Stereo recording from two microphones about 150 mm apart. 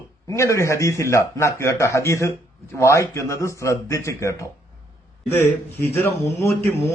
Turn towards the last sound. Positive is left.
turn(degrees=15)  # may be behind; listen again after turning